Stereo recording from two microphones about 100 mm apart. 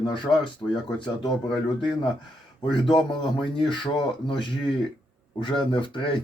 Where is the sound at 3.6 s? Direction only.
55° left (ahead or behind).